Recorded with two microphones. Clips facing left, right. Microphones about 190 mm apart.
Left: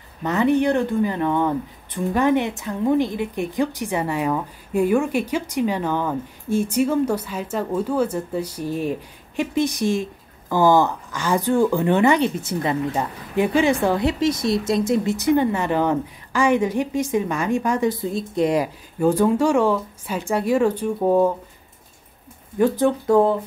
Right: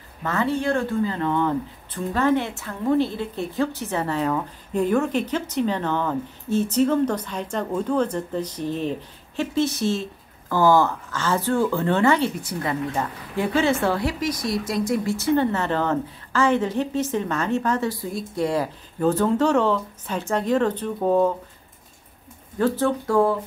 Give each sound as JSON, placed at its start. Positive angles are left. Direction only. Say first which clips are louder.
{"t": 0.2, "sound": "speech", "louder": "left 5 dB", "side_deg": 20}
{"t": 22.6, "sound": "speech", "louder": "left 3 dB", "side_deg": 15}